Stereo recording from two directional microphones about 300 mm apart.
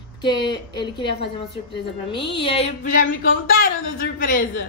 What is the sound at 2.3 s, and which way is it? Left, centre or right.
Speech, centre.